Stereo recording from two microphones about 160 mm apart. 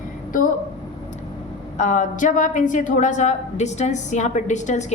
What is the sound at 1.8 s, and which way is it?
A woman's voice, 50° left (ahead or behind).